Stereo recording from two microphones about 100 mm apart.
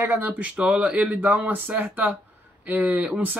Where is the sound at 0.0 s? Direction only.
20° right (ahead or behind).